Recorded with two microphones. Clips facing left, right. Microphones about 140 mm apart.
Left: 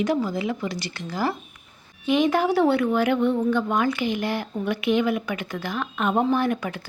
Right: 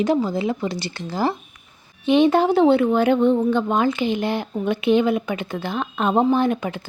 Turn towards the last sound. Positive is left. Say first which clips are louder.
# right 4 dB
turn(degrees=-20)  # may be behind; listen again after turning